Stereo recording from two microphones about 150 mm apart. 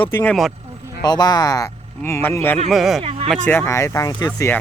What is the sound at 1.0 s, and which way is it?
Speech, 25° left (ahead or behind).